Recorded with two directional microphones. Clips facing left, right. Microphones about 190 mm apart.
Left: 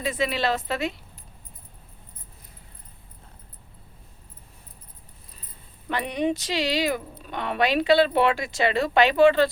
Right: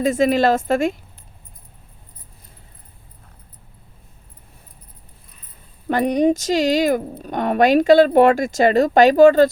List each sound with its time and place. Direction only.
0.0 s speech: 45° right (ahead or behind)
5.9 s speech: 40° right (ahead or behind)